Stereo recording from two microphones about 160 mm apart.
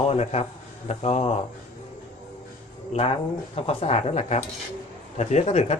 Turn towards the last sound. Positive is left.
turn(degrees=40)  # may be behind; listen again after turning